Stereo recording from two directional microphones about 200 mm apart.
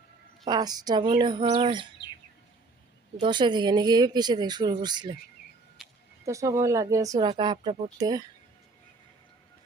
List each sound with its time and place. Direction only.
0.4 s speech: 20° right (ahead or behind)
3.2 s speech: 25° right (ahead or behind)
5.8 s a sound: centre (ahead or behind)
6.2 s speech: 15° right (ahead or behind)